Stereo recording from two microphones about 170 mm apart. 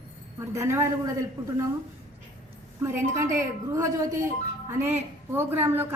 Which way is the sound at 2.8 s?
15° right (ahead or behind).